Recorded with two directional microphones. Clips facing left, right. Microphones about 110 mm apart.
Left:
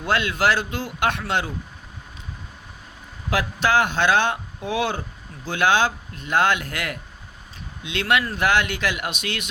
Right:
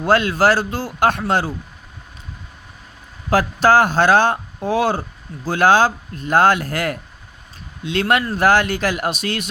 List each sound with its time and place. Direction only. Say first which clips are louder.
0.0 s speech: right 6 dB; 40° right (ahead or behind)
3.2 s speech: right 7 dB; 40° right (ahead or behind)